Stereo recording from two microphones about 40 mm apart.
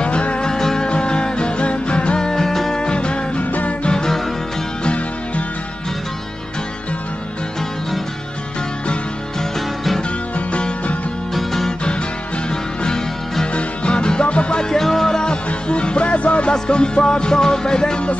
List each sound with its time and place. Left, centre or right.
0.0 s music: left
0.5 s music: centre
0.8 s music: left; by 2.8 s centre
2.8 s music: left
4.8 s music: left
9.4 s music: centre
11.3 s music: centre
12.4 s music: centre
14.6 s music: centre
15.7 s music: left
16.5 s music: left